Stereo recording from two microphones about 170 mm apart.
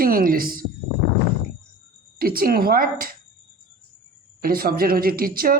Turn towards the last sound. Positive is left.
turn(degrees=-60)  # may be behind; listen again after turning